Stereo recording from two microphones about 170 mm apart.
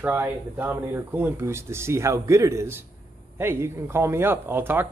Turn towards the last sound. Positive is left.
turn(degrees=-10)  # may be behind; listen again after turning